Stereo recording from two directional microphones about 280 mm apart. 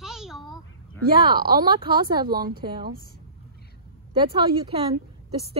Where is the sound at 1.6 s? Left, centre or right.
Centre.